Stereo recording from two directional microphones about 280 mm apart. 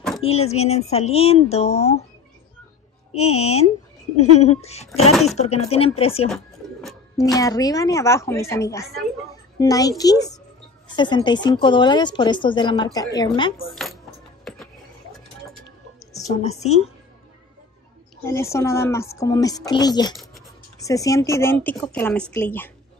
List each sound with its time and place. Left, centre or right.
0.2 s speech: left
3.2 s speech: left
4.2 s speech: left
6.3 s bird: centre
7.2 s a woman's voice: centre
13.7 s speech: centre
16.3 s speech: left
18.2 s a woman's voice: centre